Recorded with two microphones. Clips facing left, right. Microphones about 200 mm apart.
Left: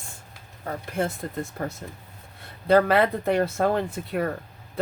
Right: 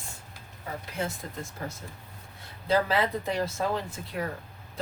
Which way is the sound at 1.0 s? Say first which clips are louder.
Left 7 dB; 50° left (ahead or behind).